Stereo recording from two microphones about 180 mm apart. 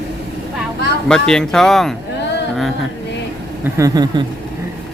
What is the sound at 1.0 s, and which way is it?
Speech, 5° left (ahead or behind).